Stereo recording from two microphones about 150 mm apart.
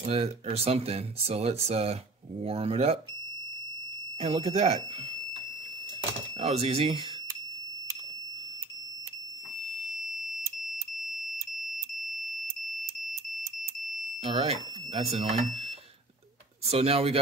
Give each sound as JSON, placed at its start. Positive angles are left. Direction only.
{"t": 0.1, "sound": "speech", "side_deg": -40}
{"t": 4.2, "sound": "speech", "side_deg": -45}
{"t": 6.4, "sound": "speech", "side_deg": -45}
{"t": 14.2, "sound": "speech", "side_deg": -40}
{"t": 16.7, "sound": "speech", "side_deg": -40}